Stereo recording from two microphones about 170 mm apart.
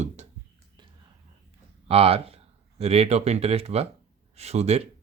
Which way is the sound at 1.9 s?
35° right (ahead or behind).